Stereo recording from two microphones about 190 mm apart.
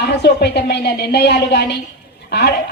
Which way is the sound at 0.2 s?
60° left (ahead or behind).